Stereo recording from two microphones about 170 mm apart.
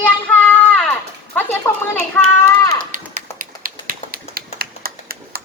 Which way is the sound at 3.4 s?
55° right (ahead or behind).